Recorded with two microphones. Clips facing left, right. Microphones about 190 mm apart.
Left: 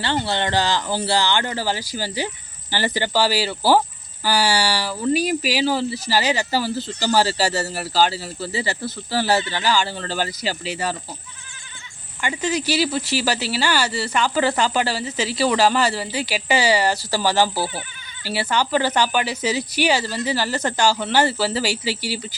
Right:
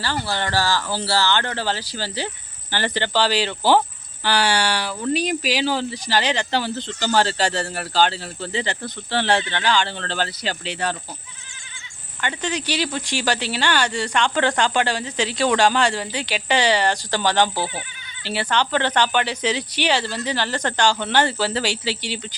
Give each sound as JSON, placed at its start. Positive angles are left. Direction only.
{"t": 0.0, "sound": "speech", "side_deg": 25}
{"t": 12.2, "sound": "speech", "side_deg": 10}